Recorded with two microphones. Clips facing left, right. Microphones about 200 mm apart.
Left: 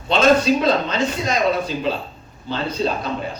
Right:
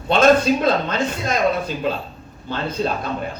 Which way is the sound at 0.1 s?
50° right (ahead or behind).